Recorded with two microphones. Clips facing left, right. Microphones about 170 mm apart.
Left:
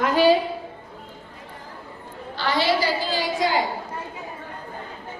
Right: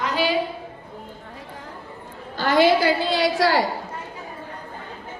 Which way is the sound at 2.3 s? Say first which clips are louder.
Right 5 dB; 50° right (ahead or behind).